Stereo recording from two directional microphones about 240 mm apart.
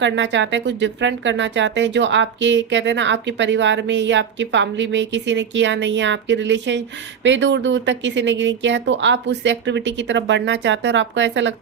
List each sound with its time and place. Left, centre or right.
0.0 s speech: right